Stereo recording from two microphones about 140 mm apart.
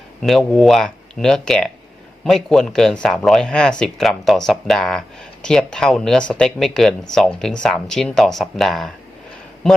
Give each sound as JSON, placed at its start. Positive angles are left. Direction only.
{"t": 0.2, "sound": "speech", "side_deg": 0}